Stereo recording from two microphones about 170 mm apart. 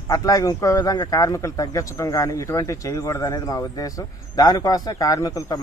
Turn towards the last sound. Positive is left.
turn(degrees=20)  # may be behind; listen again after turning